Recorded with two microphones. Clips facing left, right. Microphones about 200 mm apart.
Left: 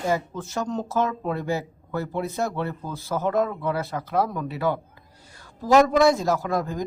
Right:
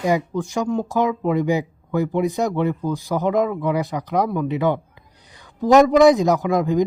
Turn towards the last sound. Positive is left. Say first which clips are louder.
# right 8 dB
turn(degrees=-15)  # may be behind; listen again after turning